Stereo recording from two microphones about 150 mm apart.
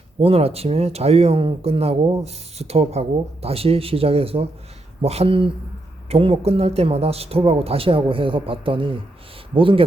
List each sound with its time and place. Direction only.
0.2 s speech: 40° right (ahead or behind)